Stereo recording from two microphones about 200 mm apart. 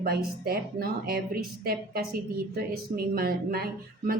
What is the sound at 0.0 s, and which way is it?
A woman's voice, 50° right (ahead or behind).